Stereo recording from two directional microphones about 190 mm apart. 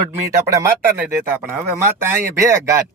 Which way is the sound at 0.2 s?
15° right (ahead or behind).